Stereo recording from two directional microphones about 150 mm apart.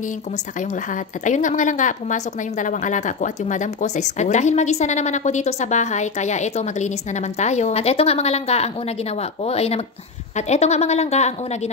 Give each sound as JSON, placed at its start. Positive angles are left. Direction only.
{"t": 0.6, "sound": "a woman's voice", "side_deg": 55}